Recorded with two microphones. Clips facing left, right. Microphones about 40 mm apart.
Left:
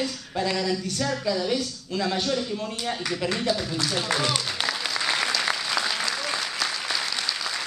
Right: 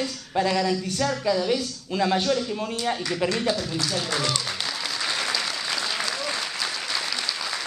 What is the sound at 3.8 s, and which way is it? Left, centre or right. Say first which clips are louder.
Speech: left 1 dB; centre.